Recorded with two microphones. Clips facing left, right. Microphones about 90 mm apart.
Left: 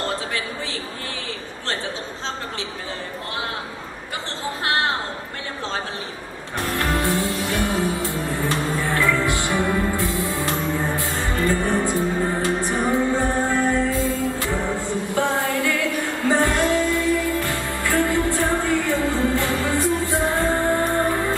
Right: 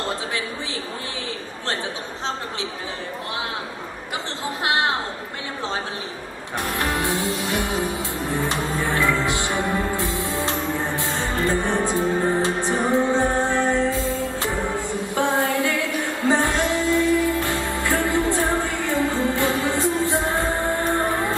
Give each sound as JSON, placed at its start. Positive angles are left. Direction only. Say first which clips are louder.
{"t": 6.6, "sound": "music", "louder": "left 2 dB", "side_deg": -20}